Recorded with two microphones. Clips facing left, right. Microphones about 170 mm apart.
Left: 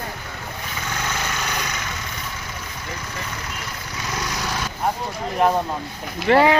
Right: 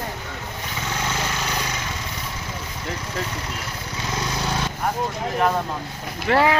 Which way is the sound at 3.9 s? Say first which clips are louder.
Right 1 dB; 25° right (ahead or behind).